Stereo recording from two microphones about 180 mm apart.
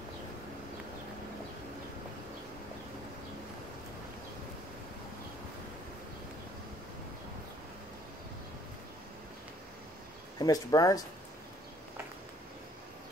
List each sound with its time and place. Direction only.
10.4 s speech: 20° left (ahead or behind)